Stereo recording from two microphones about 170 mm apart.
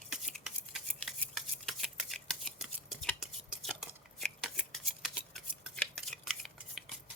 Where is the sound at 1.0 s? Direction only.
Centre (ahead or behind).